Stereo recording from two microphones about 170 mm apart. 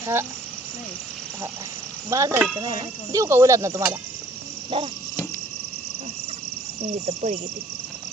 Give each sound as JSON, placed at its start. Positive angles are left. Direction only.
{"t": 0.0, "sound": "speech", "side_deg": -15}
{"t": 2.0, "sound": "speech", "side_deg": -20}
{"t": 4.7, "sound": "speech", "side_deg": -30}
{"t": 6.8, "sound": "speech", "side_deg": -40}